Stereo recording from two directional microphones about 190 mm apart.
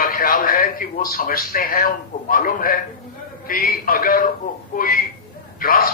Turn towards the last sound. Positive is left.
turn(degrees=50)  # may be behind; listen again after turning